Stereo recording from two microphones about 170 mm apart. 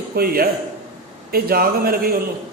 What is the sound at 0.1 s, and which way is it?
A man's voice, 60° right (ahead or behind).